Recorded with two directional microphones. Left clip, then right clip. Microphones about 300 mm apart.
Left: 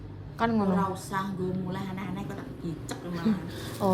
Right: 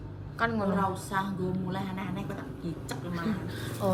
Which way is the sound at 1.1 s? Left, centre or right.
Centre.